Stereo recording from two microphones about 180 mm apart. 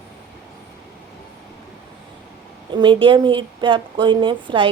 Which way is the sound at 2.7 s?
25° right (ahead or behind).